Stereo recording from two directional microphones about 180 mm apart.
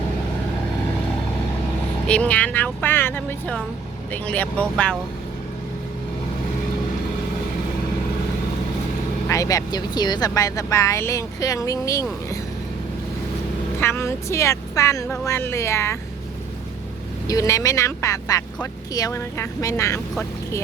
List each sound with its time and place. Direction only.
2.0 s speech: 5° left (ahead or behind)
9.3 s speech: 20° left (ahead or behind)
13.7 s speech: 15° left (ahead or behind)
17.2 s speech: 20° left (ahead or behind)